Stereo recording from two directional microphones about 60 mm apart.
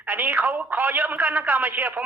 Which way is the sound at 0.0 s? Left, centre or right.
Right.